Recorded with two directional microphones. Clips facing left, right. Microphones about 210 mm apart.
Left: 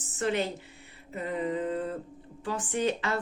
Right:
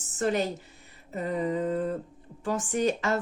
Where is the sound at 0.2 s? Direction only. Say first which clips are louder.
Right 2 dB; 40° right (ahead or behind).